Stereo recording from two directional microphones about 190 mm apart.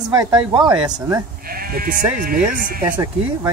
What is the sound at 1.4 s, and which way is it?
Speech, 50° right (ahead or behind).